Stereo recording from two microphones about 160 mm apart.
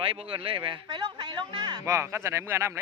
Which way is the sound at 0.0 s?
35° right (ahead or behind).